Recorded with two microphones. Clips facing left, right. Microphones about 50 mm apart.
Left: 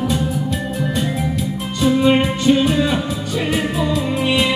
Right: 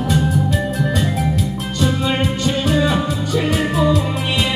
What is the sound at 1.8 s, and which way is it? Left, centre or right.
Music, centre.